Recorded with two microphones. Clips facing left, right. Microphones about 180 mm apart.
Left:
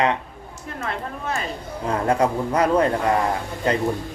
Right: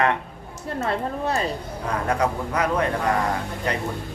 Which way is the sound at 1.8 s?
25° left (ahead or behind).